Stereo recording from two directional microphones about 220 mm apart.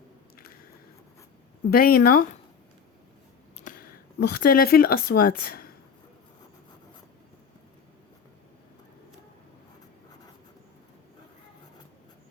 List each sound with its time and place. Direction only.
1.7 s speech: 40° left (ahead or behind)
3.6 s speech: 40° left (ahead or behind)